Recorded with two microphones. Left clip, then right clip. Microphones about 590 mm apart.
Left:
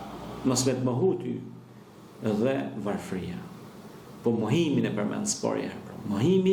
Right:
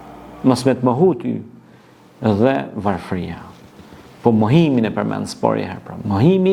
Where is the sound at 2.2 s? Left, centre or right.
Right.